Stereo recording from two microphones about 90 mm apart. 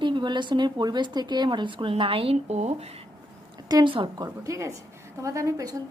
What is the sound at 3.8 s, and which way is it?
Speech, 65° right (ahead or behind).